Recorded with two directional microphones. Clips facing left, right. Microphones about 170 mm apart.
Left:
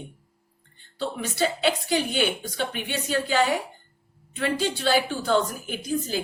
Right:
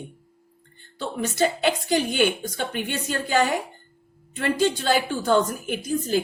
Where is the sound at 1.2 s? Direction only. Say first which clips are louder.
Right 3 dB; 45° right (ahead or behind).